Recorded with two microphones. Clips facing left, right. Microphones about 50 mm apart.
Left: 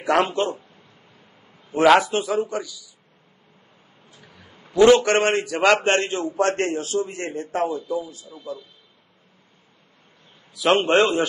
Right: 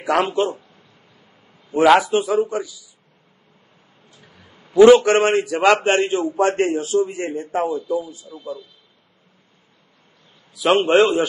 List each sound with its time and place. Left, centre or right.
0.0 s a man's voice: centre
1.7 s a man's voice: centre
2.5 s a man's voice: right
4.5 s a sound: left
4.7 s a man's voice: centre
7.9 s a man's voice: right
10.5 s a man's voice: centre